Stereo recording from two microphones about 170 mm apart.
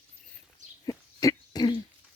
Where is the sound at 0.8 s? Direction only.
20° left (ahead or behind).